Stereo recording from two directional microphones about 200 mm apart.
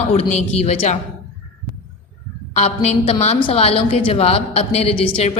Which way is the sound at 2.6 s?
35° left (ahead or behind).